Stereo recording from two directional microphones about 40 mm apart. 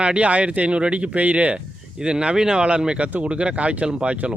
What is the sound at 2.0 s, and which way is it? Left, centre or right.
Speech, right.